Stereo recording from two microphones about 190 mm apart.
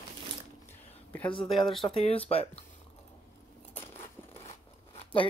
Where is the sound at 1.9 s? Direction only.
30° left (ahead or behind).